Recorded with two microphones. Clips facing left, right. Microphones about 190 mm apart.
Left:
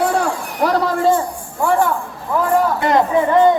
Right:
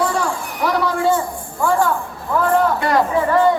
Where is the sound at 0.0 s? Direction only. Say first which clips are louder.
Left 2 dB; 65° left (ahead or behind).